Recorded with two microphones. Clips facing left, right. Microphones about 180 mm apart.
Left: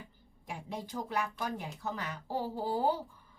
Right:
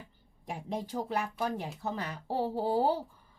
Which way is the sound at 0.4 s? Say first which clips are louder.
Right 4 dB; 35° right (ahead or behind).